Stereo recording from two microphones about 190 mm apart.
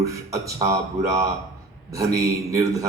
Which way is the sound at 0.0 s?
15° right (ahead or behind).